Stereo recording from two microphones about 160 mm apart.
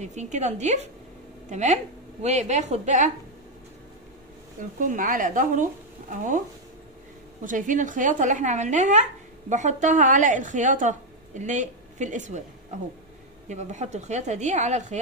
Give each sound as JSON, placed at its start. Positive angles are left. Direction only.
{"t": 0.0, "sound": "a woman's voice", "side_deg": -45}
{"t": 4.7, "sound": "speech", "side_deg": -55}
{"t": 7.4, "sound": "a woman's voice", "side_deg": -55}
{"t": 13.5, "sound": "a woman's voice", "side_deg": -45}